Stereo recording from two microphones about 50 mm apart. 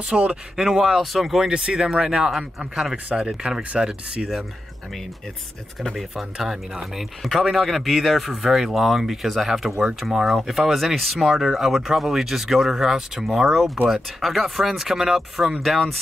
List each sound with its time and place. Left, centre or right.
0.1 s speech: right
0.6 s speech: centre
3.1 s speech: centre
6.3 s speech: centre